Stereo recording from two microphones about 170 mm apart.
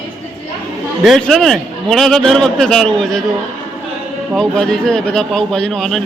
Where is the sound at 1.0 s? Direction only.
Centre (ahead or behind).